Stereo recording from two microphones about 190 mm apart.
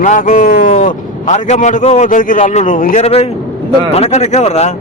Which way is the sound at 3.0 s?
35° left (ahead or behind).